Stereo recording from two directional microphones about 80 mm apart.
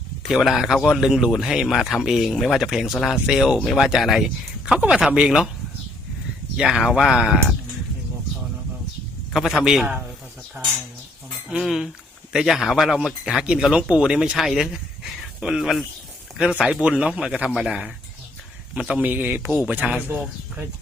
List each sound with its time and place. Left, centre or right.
0.2 s speech: centre
6.6 s speech: centre
9.3 s speech: centre
11.6 s speech: centre